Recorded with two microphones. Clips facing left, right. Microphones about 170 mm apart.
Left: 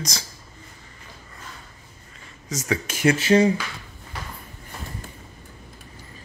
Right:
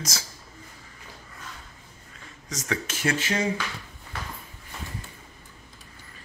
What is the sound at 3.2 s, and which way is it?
Speech, 35° left (ahead or behind).